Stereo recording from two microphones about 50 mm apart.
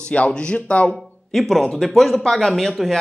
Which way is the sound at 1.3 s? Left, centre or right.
Centre.